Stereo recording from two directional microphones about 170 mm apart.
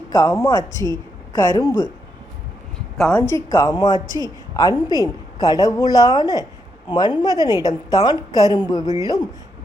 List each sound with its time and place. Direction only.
0.1 s speech: 15° left (ahead or behind)
3.0 s speech: 10° left (ahead or behind)